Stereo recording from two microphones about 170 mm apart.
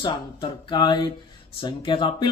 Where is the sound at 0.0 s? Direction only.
25° left (ahead or behind).